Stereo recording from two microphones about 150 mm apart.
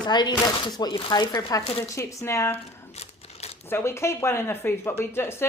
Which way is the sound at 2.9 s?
45° left (ahead or behind).